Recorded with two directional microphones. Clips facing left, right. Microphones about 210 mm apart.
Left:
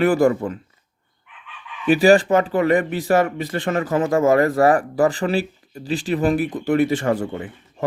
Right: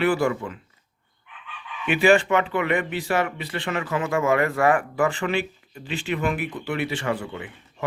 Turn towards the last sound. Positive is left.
turn(degrees=40)  # may be behind; listen again after turning